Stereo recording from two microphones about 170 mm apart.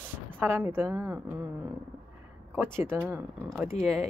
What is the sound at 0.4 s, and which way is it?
Speech, 10° right (ahead or behind).